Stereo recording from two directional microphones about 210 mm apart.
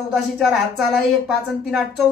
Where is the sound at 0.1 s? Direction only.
Centre (ahead or behind).